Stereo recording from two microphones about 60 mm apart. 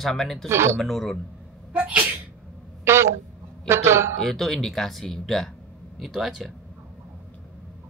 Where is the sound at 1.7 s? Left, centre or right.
Right.